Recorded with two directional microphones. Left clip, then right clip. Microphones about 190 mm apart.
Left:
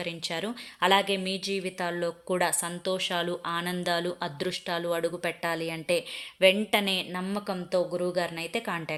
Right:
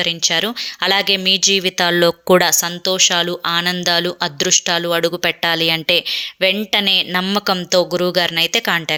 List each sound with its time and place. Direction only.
0.0 s speech: 25° right (ahead or behind)
2.5 s speech: 20° right (ahead or behind)